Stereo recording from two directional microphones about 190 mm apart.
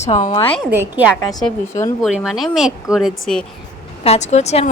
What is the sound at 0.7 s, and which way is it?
A woman's voice, 10° right (ahead or behind).